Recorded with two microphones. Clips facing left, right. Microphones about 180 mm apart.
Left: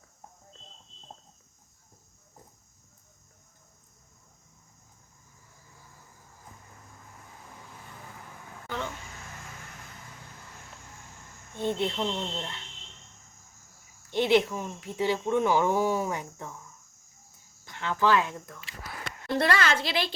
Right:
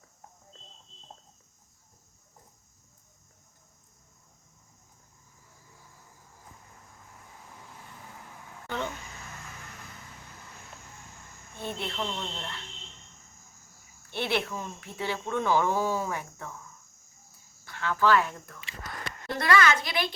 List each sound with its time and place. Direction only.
11.5 s speech: 20° left (ahead or behind)
14.1 s speech: 15° left (ahead or behind)
17.7 s speech: 20° left (ahead or behind)
18.6 s a sound: 5° left (ahead or behind)
19.4 s speech: 30° left (ahead or behind)